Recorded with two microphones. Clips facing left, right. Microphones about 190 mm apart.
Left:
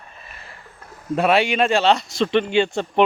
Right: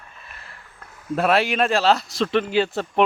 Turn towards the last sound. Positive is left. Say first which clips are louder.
# left 2 dB
turn(degrees=-5)  # may be behind; listen again after turning